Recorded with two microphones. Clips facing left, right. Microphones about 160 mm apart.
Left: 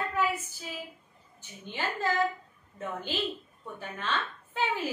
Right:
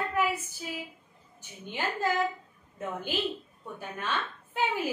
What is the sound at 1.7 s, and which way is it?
A woman's voice, 15° right (ahead or behind).